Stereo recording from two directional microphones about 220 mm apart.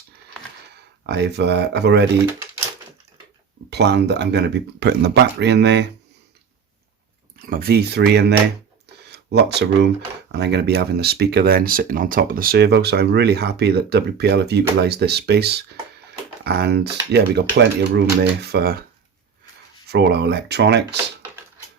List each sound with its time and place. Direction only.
1.0 s speech: 50° right (ahead or behind)
3.7 s speech: 50° right (ahead or behind)
7.3 s speech: 40° right (ahead or behind)
19.9 s speech: 50° right (ahead or behind)